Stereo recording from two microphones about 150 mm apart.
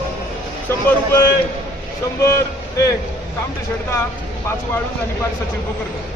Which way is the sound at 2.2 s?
20° left (ahead or behind).